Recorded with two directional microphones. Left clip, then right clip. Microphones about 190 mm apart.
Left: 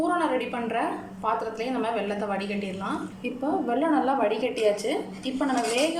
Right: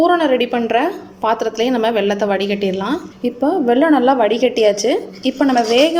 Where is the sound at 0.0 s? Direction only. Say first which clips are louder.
Right 11 dB; 50° right (ahead or behind).